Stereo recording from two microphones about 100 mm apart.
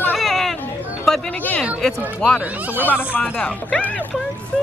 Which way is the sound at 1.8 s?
5° left (ahead or behind).